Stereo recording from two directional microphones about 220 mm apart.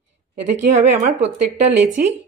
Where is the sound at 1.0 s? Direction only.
30° right (ahead or behind).